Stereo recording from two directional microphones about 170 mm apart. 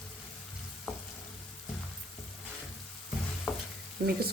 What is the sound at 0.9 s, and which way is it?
Frying, centre (ahead or behind).